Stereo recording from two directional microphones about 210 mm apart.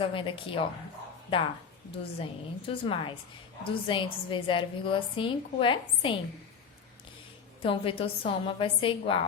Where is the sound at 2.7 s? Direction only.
25° left (ahead or behind).